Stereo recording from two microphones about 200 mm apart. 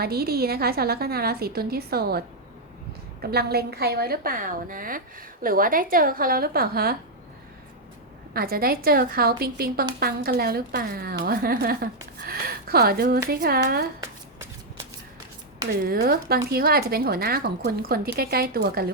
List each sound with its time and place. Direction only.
0.0 s a woman's voice: 50° right (ahead or behind)
8.3 s a woman's voice: 50° right (ahead or behind)
15.8 s a woman's voice: 50° right (ahead or behind)